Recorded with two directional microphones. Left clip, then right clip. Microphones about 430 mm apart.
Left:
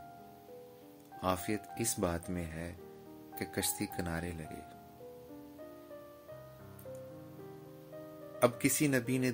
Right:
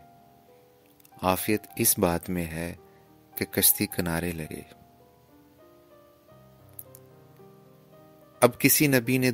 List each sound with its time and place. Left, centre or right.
1.2 s speech: right
8.4 s speech: right